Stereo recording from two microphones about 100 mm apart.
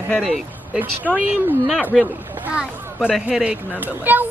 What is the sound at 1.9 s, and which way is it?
Speech, centre (ahead or behind).